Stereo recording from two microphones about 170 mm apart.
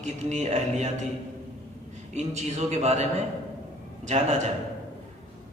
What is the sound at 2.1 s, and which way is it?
Speech, 40° right (ahead or behind).